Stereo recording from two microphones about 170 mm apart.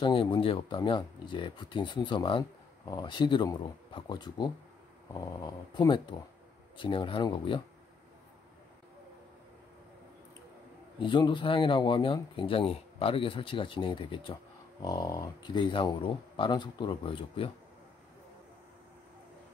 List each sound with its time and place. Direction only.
0.0 s speech: 30° left (ahead or behind)
5.8 s speech: 25° left (ahead or behind)
11.0 s speech: 30° left (ahead or behind)